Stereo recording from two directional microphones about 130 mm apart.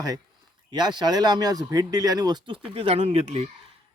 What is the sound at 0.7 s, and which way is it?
Speech, 35° right (ahead or behind).